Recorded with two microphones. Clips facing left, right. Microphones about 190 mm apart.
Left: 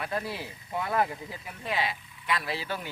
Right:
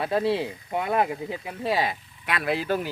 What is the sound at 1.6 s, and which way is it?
Speech, 40° right (ahead or behind).